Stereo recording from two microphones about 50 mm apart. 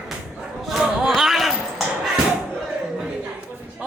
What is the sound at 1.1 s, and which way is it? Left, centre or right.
Basketball bounce, centre.